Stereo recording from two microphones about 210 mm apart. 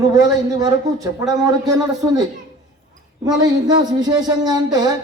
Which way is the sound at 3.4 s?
20° right (ahead or behind).